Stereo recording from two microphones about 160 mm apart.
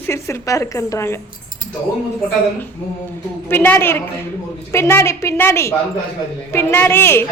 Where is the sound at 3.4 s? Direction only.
10° left (ahead or behind).